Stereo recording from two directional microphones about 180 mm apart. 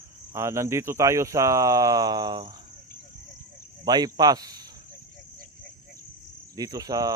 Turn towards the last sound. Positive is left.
turn(degrees=-20)  # may be behind; listen again after turning